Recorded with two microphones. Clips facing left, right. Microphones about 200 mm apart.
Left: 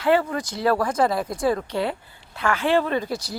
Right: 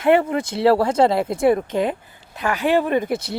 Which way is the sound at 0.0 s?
20° right (ahead or behind).